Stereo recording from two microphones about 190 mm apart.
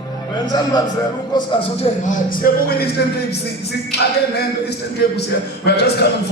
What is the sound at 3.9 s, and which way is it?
Tap, 60° left (ahead or behind).